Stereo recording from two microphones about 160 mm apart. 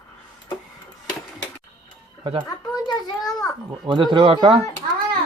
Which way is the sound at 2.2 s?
35° right (ahead or behind).